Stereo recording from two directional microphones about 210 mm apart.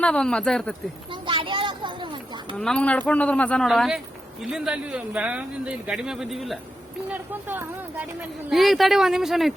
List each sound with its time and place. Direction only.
0.0 s a man's voice: 5° left (ahead or behind)
1.1 s a sound: 25° right (ahead or behind)
2.6 s a man's voice: 5° left (ahead or behind)